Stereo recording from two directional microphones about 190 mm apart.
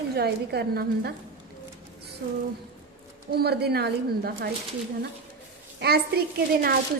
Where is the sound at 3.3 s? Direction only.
55° right (ahead or behind).